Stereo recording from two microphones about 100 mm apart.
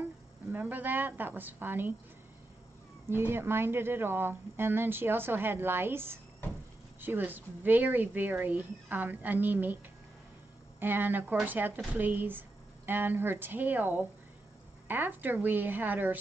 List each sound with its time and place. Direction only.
0.5 s speech: 20° right (ahead or behind)
3.1 s speech: 25° right (ahead or behind)
10.8 s speech: 20° right (ahead or behind)